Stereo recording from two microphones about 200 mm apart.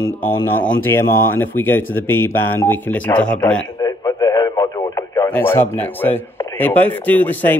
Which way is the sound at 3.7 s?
20° left (ahead or behind).